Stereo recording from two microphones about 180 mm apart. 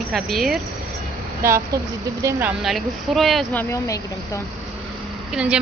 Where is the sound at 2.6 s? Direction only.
Centre (ahead or behind).